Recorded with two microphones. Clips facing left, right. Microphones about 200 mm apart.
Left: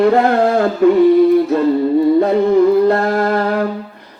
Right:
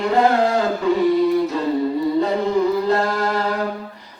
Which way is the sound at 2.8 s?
55° left (ahead or behind).